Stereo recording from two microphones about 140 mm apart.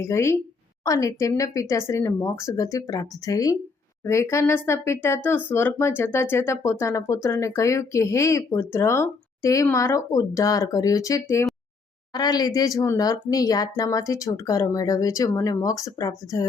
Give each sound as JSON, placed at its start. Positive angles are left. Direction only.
{"t": 0.0, "sound": "speech", "side_deg": 20}